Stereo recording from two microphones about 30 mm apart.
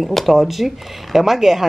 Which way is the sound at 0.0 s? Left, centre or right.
Centre.